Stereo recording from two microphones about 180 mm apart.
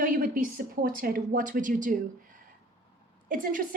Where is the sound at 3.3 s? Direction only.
50° right (ahead or behind).